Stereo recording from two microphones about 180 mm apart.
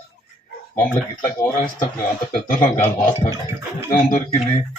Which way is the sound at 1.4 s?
10° left (ahead or behind).